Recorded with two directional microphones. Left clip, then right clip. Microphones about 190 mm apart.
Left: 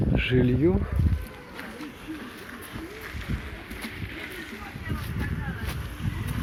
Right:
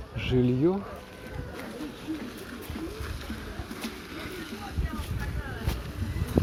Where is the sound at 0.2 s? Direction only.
15° left (ahead or behind).